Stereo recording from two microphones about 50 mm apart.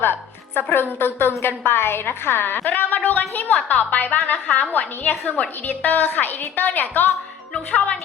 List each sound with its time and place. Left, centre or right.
0.0 s a woman's voice: left
7.5 s speech: left